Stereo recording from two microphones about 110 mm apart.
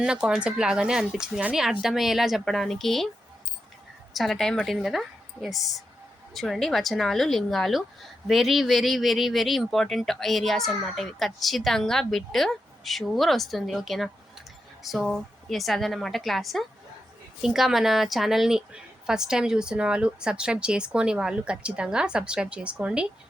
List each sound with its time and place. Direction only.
0.0 s a woman's voice: 10° right (ahead or behind)
4.1 s a woman's voice: centre (ahead or behind)